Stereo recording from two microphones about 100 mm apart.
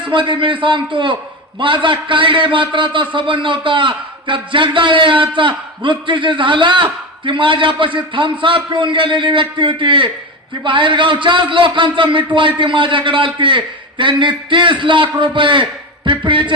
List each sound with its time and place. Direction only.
0.1 s a man's voice: 55° right (ahead or behind)